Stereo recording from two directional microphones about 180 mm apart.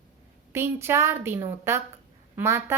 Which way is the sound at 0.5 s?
15° right (ahead or behind).